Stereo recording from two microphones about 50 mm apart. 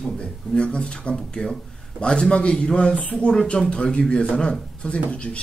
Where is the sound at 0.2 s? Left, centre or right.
Centre.